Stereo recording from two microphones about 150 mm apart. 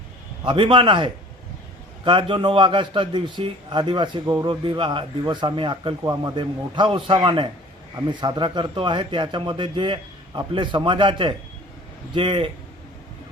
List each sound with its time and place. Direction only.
0.4 s a man's voice: 35° right (ahead or behind)